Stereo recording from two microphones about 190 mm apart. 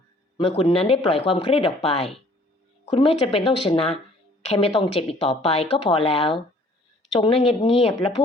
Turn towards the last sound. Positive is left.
turn(degrees=30)  # may be behind; listen again after turning